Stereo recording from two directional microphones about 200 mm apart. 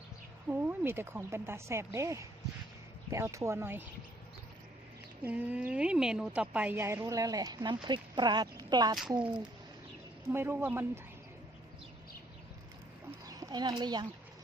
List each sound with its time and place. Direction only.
0.6 s a woman's voice: 10° right (ahead or behind)
5.2 s a woman's voice: 10° right (ahead or behind)
9.0 s a woman's voice: 5° right (ahead or behind)
13.2 s speech: 20° right (ahead or behind)